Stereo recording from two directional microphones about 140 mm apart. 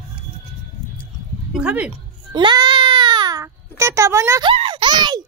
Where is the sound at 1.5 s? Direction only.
10° right (ahead or behind).